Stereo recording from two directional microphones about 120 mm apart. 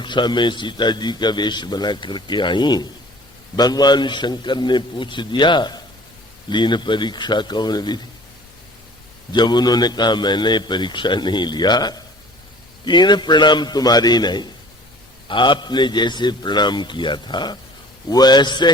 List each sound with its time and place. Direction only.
0.0 s a man's voice: 40° left (ahead or behind)
9.3 s a man's voice: 35° left (ahead or behind)